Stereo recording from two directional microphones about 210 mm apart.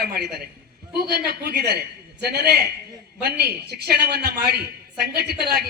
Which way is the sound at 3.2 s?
50° right (ahead or behind).